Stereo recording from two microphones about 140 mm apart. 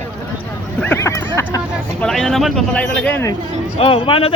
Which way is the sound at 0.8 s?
20° left (ahead or behind).